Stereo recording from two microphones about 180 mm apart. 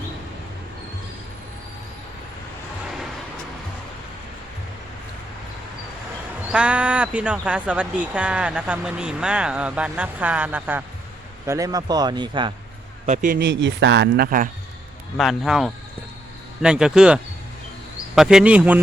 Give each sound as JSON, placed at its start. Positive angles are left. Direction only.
{"t": 6.5, "sound": "a man's voice", "side_deg": -5}
{"t": 13.1, "sound": "speech", "side_deg": -50}
{"t": 15.2, "sound": "speech", "side_deg": 0}